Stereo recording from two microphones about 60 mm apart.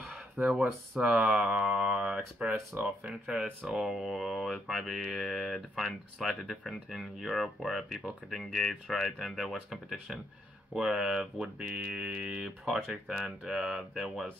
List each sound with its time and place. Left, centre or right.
0.0 s speech: centre
3.6 s speech: centre